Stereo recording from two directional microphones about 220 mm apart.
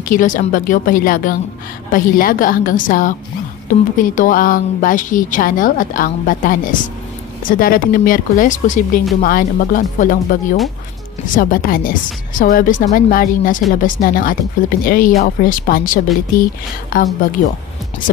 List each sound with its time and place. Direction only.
0.1 s a woman's voice: 35° left (ahead or behind)